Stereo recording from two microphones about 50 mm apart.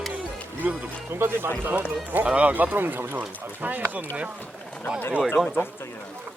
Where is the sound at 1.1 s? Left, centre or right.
Right.